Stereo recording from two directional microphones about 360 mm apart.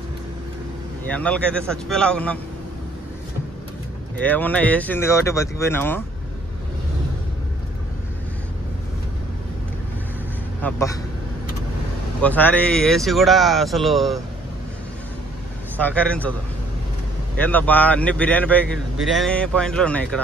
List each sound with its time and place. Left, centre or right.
1.1 s speech: centre
4.2 s speech: centre
10.6 s a man's voice: centre
12.2 s speech: centre
15.8 s speech: centre
17.4 s speech: centre